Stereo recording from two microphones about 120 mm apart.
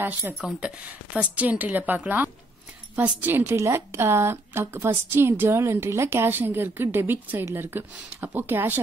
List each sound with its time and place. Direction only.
0.0 s a woman's voice: 15° right (ahead or behind)